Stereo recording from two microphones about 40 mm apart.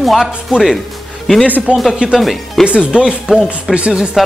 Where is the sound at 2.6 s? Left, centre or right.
Right.